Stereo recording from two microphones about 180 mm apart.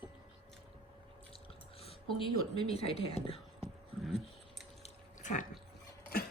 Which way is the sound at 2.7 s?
35° left (ahead or behind).